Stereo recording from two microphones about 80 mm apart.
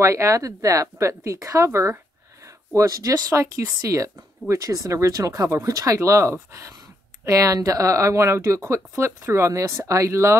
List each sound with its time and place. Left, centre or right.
0.0 s speech: right